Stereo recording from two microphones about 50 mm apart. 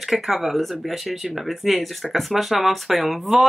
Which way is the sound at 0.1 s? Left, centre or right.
Centre.